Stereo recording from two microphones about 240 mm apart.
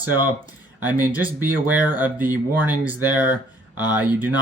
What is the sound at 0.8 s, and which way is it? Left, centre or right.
Speech, centre.